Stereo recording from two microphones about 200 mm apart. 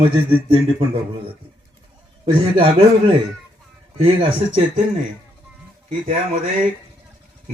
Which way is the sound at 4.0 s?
25° right (ahead or behind).